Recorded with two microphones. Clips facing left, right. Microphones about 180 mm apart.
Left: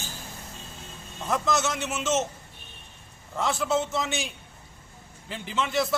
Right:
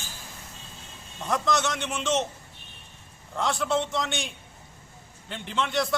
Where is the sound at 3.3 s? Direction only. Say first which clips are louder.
Even; centre (ahead or behind).